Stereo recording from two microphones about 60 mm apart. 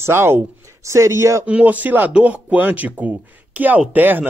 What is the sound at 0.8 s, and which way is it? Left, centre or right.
Speech, right.